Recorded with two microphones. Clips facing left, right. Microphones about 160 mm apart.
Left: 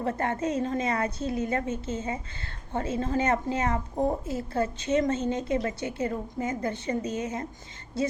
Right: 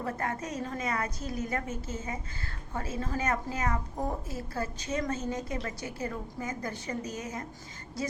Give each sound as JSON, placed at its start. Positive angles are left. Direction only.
{"t": 0.0, "sound": "a woman's voice", "side_deg": 30}